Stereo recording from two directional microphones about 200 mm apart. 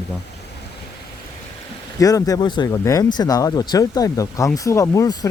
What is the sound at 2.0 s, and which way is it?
Speech, 20° left (ahead or behind).